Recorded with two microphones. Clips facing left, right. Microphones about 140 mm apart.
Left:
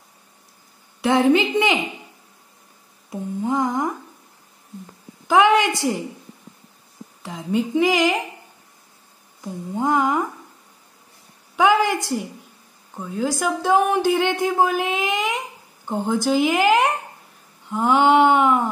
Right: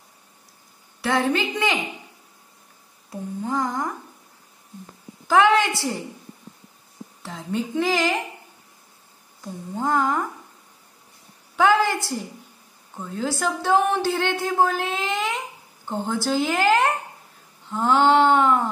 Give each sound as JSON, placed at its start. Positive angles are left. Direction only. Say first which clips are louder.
{"t": 1.0, "sound": "humming", "louder": "left 6 dB", "side_deg": 20}
{"t": 3.1, "sound": "humming", "louder": "left 4 dB", "side_deg": 20}
{"t": 5.3, "sound": "a woman's voice", "louder": "left 2 dB", "side_deg": 15}
{"t": 7.2, "sound": "speech", "louder": "left 5 dB", "side_deg": 10}
{"t": 9.4, "sound": "speech", "louder": "left 3 dB", "side_deg": 15}
{"t": 11.5, "sound": "a woman's voice", "louder": "left 1 dB", "side_deg": 10}
{"t": 17.6, "sound": "a sound", "louder": "left 2 dB", "side_deg": 10}